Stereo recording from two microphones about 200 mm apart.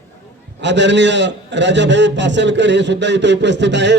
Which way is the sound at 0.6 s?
60° right (ahead or behind).